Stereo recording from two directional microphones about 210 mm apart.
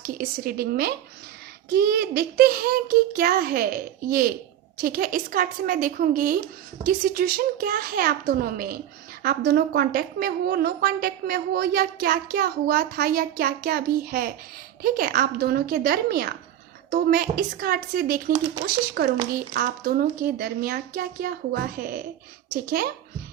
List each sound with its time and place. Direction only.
0.0 s a woman's voice: 45° right (ahead or behind)